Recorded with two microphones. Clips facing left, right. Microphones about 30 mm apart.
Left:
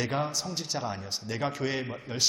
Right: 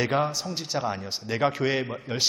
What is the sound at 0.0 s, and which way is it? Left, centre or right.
A man's voice, centre.